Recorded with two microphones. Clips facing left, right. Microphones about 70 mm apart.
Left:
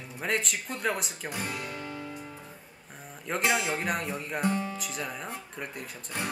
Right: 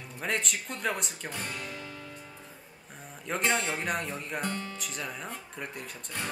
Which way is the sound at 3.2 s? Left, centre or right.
Centre.